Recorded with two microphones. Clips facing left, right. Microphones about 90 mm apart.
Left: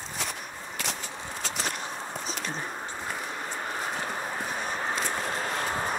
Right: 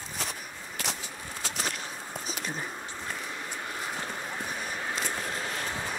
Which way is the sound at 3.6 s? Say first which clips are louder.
Left 4 dB; 50° left (ahead or behind).